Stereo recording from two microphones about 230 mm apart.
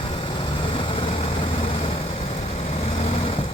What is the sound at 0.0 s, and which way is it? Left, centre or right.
Vehicle, left.